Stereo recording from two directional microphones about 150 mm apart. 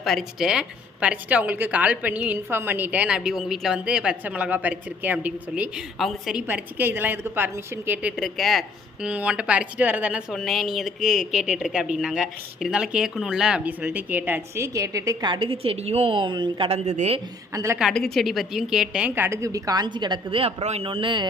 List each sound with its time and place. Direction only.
0.0 s speech: centre (ahead or behind)
6.5 s speech: 15° right (ahead or behind)
8.1 s speech: centre (ahead or behind); by 17.2 s 45° right (ahead or behind)
17.5 s a woman's voice: 20° right (ahead or behind)
17.7 s a woman's voice: centre (ahead or behind); by 21.2 s 35° right (ahead or behind)